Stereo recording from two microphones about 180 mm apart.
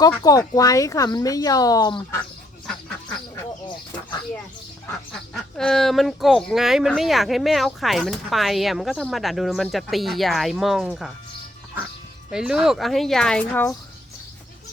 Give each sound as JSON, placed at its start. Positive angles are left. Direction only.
{"t": 0.2, "sound": "speech", "side_deg": 20}
{"t": 5.3, "sound": "speech", "side_deg": 0}
{"t": 12.3, "sound": "speech", "side_deg": -5}